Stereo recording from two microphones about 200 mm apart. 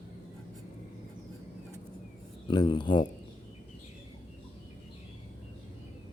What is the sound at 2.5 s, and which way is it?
Speech, 25° left (ahead or behind).